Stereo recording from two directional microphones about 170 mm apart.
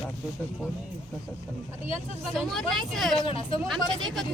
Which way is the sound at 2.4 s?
Centre (ahead or behind).